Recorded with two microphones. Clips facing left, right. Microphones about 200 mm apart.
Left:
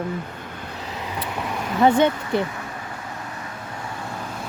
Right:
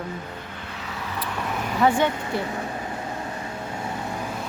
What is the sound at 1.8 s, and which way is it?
Speech, 20° left (ahead or behind).